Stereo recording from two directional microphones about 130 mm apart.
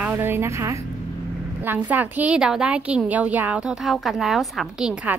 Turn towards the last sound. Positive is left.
turn(degrees=-5)  # may be behind; listen again after turning